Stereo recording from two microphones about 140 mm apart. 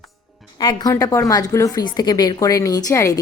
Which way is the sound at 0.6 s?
30° left (ahead or behind).